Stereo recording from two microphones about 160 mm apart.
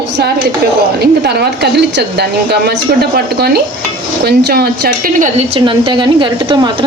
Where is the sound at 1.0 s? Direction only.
85° right; by 5.3 s 65° right (ahead or behind).